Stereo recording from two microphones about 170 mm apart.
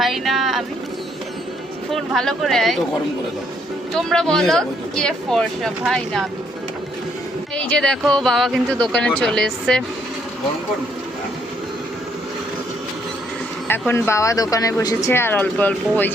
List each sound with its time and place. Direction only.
0.0 s boat: centre (ahead or behind)
1.9 s speech: centre (ahead or behind)
3.9 s speech: 5° left (ahead or behind)
7.5 s speech: 5° left (ahead or behind)
13.7 s speech: 15° left (ahead or behind)